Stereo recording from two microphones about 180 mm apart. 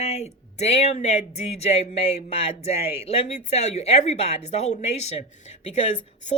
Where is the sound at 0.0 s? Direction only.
35° left (ahead or behind).